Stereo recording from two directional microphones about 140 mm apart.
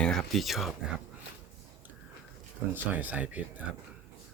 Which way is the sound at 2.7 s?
10° right (ahead or behind).